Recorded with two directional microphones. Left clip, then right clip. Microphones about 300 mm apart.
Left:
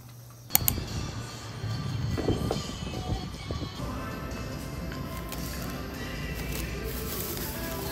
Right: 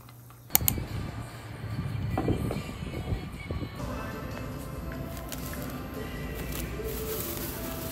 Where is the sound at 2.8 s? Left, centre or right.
Centre.